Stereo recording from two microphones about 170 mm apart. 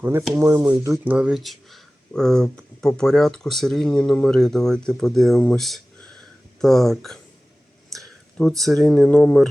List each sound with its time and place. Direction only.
0.0 s speech: 15° right (ahead or behind)
1.0 s speech: 5° right (ahead or behind)